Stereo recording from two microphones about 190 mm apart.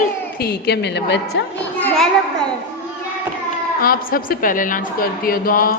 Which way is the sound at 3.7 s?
50° left (ahead or behind).